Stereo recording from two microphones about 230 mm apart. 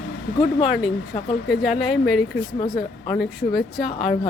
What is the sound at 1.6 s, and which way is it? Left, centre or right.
Speech, centre.